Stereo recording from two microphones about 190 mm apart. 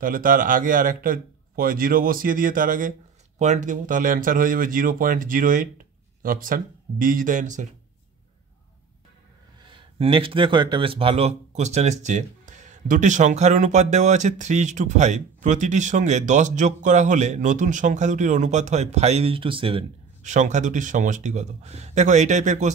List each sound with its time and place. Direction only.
0.0 s speech: 45° right (ahead or behind)
9.6 s speech: 25° right (ahead or behind)
20.2 s speech: 40° right (ahead or behind)